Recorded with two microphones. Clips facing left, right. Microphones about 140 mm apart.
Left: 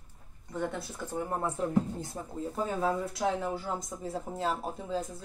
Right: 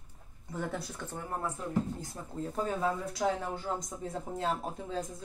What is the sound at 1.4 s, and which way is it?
Speech, 25° left (ahead or behind).